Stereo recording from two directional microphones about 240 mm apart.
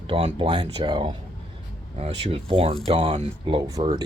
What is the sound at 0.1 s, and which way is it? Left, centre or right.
Speech, right.